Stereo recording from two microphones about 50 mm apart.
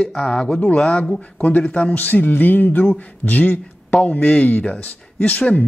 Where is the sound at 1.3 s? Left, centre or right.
Left.